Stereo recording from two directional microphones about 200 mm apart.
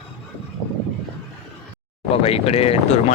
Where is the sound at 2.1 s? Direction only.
30° left (ahead or behind).